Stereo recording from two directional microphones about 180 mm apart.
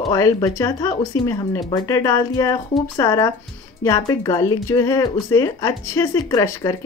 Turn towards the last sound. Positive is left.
turn(degrees=20)  # may be behind; listen again after turning